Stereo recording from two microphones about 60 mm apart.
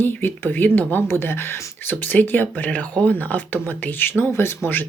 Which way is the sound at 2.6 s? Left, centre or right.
Left.